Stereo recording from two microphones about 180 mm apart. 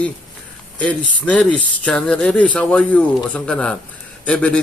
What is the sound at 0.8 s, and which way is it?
A man's voice, 10° left (ahead or behind).